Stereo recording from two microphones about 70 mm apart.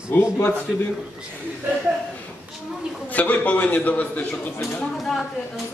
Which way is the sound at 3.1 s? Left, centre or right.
Left.